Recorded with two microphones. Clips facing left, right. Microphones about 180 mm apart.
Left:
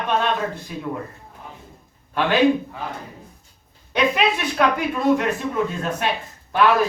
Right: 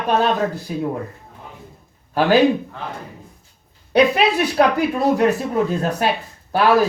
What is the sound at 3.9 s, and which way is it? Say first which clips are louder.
Speech: right 5 dB; 35° right (ahead or behind).